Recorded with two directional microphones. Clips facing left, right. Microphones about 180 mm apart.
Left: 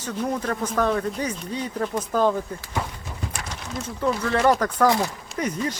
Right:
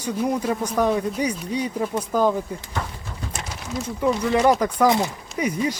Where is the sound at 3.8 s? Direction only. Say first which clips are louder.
Right 3 dB; 15° right (ahead or behind).